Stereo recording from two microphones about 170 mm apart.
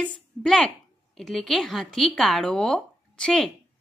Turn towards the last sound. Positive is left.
turn(degrees=5)  # may be behind; listen again after turning